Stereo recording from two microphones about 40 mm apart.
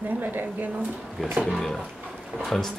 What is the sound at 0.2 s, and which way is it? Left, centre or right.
Speech, right.